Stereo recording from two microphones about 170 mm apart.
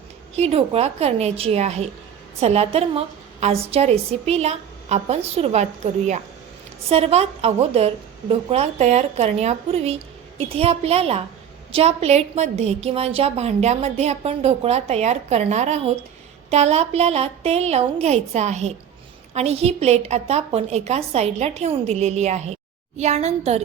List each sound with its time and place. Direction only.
0.3 s a woman's voice: 35° right (ahead or behind)